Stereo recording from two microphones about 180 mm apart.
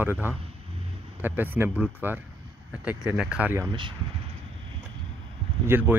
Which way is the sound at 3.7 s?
25° right (ahead or behind).